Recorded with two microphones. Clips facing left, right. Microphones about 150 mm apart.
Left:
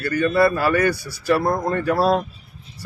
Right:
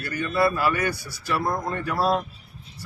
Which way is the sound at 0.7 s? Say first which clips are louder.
Left 7 dB; 55° left (ahead or behind).